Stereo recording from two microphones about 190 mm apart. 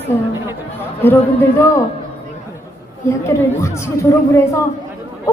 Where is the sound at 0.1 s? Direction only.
10° left (ahead or behind).